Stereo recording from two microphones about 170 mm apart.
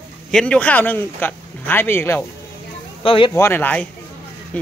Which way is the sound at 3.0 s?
30° left (ahead or behind).